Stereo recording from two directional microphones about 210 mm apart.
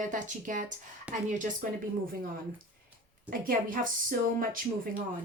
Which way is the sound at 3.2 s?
40° right (ahead or behind).